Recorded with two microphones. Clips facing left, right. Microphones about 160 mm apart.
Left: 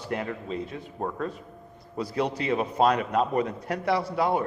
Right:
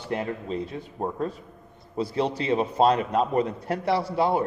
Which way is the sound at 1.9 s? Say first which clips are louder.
Right 2 dB; 30° right (ahead or behind).